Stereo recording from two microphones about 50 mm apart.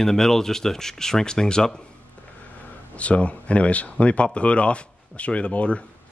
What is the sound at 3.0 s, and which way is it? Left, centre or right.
Speech, left.